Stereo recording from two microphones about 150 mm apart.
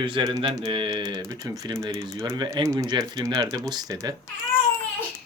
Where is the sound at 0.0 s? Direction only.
30° right (ahead or behind).